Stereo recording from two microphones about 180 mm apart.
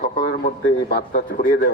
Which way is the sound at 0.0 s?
50° left (ahead or behind).